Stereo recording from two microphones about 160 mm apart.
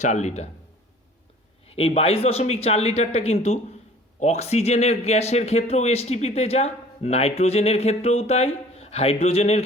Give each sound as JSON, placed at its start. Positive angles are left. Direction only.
{"t": 0.0, "sound": "speech", "side_deg": 45}
{"t": 1.7, "sound": "speech", "side_deg": 40}